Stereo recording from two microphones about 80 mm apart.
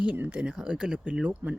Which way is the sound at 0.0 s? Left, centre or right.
Centre.